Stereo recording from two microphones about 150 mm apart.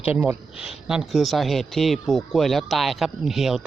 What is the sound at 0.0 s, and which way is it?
Speech, 10° right (ahead or behind).